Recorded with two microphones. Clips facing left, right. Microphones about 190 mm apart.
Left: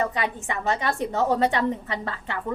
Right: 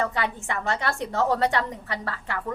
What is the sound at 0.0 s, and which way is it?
A woman's voice, 20° left (ahead or behind).